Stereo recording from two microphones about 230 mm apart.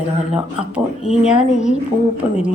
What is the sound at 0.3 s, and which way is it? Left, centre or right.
A woman's voice, centre.